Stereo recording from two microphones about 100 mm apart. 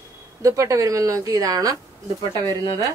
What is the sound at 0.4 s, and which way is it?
Speech, 35° right (ahead or behind).